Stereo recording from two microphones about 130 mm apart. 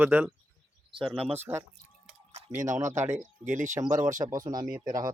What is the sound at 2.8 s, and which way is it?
Speech, 65° right (ahead or behind).